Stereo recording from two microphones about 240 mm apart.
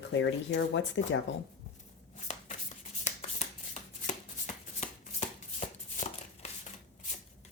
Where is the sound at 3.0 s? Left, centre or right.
Left.